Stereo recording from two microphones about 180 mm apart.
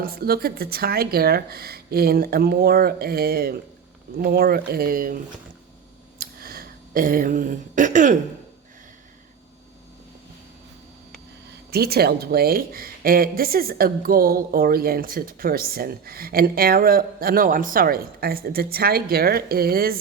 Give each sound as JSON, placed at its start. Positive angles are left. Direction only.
{"t": 0.0, "sound": "speech", "side_deg": -55}
{"t": 6.1, "sound": "a sound", "side_deg": -55}
{"t": 11.7, "sound": "speech", "side_deg": -60}